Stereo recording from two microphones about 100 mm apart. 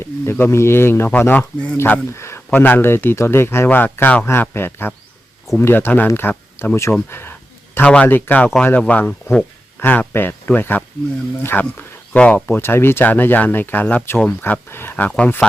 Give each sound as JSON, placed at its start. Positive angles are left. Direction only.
{"t": 0.0, "sound": "speech", "side_deg": 25}